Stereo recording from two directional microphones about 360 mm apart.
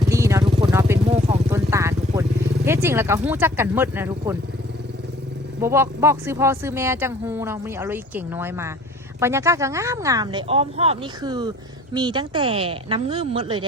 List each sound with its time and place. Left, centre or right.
0.1 s vehicle: centre
2.6 s speech: centre
5.5 s speech: centre